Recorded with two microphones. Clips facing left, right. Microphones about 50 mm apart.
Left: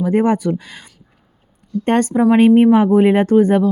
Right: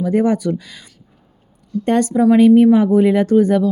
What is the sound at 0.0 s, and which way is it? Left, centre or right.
Speech, left.